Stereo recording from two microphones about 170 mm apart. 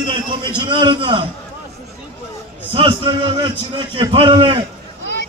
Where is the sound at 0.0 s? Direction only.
30° right (ahead or behind).